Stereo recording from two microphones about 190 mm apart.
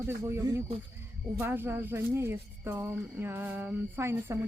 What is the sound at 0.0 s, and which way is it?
Speech, 15° right (ahead or behind).